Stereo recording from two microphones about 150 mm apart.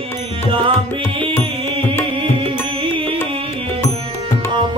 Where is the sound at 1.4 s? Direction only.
35° right (ahead or behind).